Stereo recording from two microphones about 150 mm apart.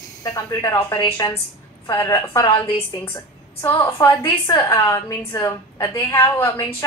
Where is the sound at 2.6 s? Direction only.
40° left (ahead or behind).